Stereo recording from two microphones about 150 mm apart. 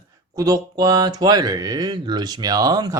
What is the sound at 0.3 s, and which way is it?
Speech, 25° right (ahead or behind).